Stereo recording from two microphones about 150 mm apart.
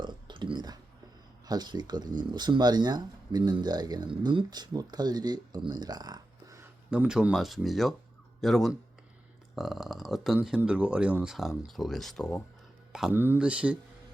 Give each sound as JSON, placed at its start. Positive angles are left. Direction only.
{"t": 0.0, "sound": "a sound", "side_deg": -30}
{"t": 1.5, "sound": "speech", "side_deg": -30}
{"t": 6.9, "sound": "speech", "side_deg": -5}